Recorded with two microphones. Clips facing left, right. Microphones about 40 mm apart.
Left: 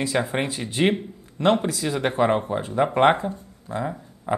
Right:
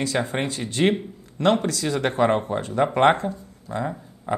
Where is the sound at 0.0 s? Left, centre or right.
Centre.